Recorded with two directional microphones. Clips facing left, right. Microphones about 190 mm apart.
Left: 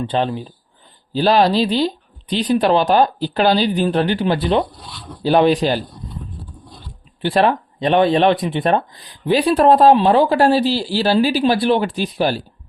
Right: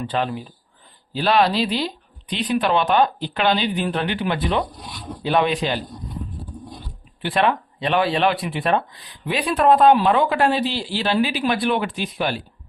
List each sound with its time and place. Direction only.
0.0 s speech: 30° left (ahead or behind)
4.7 s speech: 20° right (ahead or behind)
5.2 s speech: 35° left (ahead or behind)
7.2 s speech: 35° left (ahead or behind)